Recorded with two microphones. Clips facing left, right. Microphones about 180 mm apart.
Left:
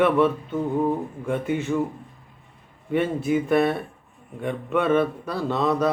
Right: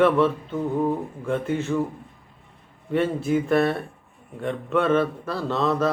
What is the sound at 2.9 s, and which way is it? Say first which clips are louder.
A man's voice: even; centre (ahead or behind).